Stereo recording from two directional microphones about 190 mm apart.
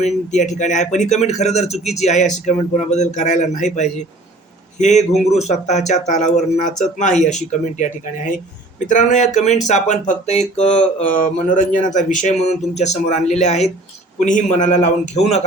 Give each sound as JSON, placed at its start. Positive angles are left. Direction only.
{"t": 0.0, "sound": "speech", "side_deg": 40}